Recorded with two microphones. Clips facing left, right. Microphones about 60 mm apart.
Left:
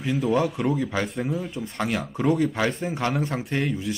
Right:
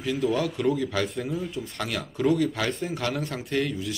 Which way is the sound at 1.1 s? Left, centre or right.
Centre.